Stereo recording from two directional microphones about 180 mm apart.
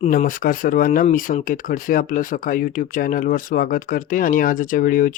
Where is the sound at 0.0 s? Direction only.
45° left (ahead or behind).